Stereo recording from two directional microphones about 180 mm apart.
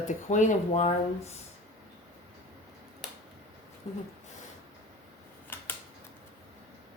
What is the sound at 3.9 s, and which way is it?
Speech, 35° left (ahead or behind).